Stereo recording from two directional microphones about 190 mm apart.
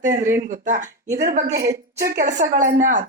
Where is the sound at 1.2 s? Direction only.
55° right (ahead or behind).